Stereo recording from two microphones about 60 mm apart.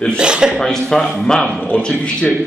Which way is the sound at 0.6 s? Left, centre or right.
Centre.